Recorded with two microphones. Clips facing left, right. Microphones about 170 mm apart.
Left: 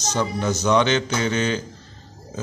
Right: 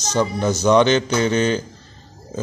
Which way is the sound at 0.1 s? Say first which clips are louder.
Right 4 dB; 35° right (ahead or behind).